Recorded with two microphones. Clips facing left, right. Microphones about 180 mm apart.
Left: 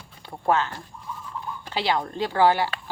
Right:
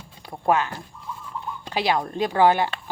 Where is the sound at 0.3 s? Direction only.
15° right (ahead or behind).